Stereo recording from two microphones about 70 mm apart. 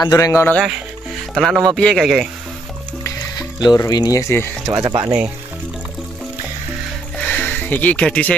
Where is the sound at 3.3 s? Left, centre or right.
Left.